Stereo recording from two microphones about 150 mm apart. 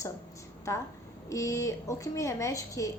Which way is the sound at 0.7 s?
20° left (ahead or behind).